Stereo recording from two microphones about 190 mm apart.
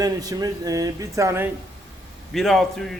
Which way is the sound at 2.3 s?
Centre (ahead or behind).